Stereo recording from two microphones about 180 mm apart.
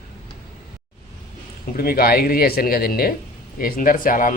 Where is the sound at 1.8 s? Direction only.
55° left (ahead or behind).